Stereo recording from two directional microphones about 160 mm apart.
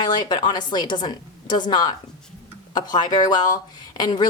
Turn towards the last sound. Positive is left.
turn(degrees=25)  # may be behind; listen again after turning